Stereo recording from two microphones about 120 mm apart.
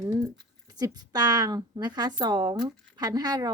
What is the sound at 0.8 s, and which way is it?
Speech, 35° right (ahead or behind).